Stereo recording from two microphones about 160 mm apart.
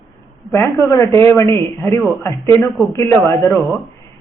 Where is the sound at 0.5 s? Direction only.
20° left (ahead or behind).